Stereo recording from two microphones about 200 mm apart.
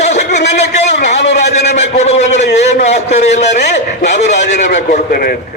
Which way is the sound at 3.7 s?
60° left (ahead or behind).